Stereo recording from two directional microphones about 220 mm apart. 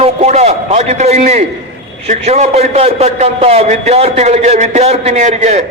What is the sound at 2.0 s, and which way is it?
A man's voice, 30° right (ahead or behind).